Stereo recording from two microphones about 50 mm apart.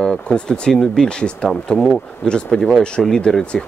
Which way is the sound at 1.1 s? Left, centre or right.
Centre.